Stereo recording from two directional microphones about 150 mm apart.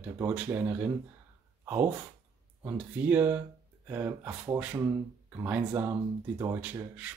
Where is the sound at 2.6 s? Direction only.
10° right (ahead or behind).